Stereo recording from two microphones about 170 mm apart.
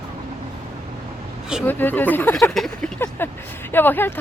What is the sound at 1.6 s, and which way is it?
Speech, 10° left (ahead or behind).